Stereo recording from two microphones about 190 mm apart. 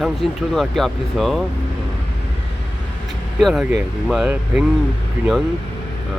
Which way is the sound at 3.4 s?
Centre (ahead or behind).